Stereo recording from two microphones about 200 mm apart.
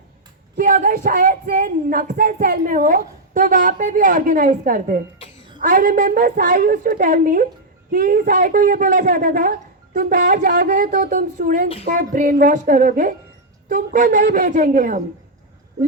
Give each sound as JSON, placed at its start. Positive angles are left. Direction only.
{"t": 0.5, "sound": "a woman's voice", "side_deg": -40}